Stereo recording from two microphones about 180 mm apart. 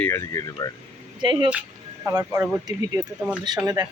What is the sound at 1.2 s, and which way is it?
Speech, 25° right (ahead or behind).